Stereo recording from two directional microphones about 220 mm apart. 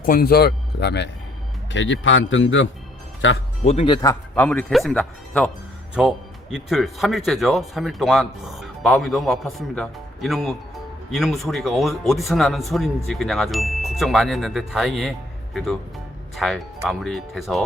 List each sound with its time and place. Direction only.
0.0 s a man's voice: 40° left (ahead or behind); by 3.4 s 60° left (ahead or behind)
3.6 s speech: 30° left (ahead or behind); by 17.6 s centre (ahead or behind)